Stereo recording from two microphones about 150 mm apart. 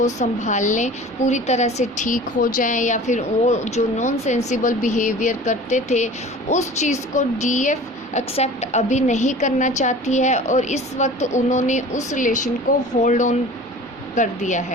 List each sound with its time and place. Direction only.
0.0 s a woman's voice: 50° left (ahead or behind)